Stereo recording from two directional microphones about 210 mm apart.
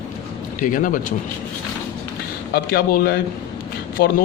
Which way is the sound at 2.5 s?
45° left (ahead or behind).